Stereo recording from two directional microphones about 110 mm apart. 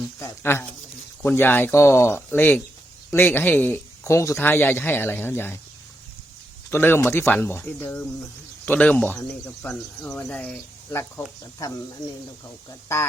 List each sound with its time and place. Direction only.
0.2 s speech: 20° left (ahead or behind)
4.0 s speech: 25° left (ahead or behind)
6.7 s speech: 20° left (ahead or behind)
10.2 s speech: 10° left (ahead or behind)